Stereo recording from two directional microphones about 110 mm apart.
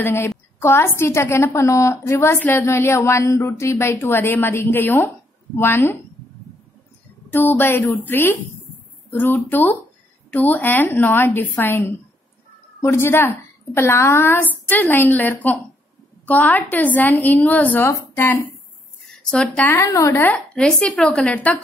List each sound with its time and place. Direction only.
0.0 s a woman's voice: 25° left (ahead or behind)
7.2 s a woman's voice: 20° left (ahead or behind)
19.3 s a woman's voice: 10° left (ahead or behind)
19.7 s a woman's voice: 30° left (ahead or behind); by 21.6 s 10° left (ahead or behind)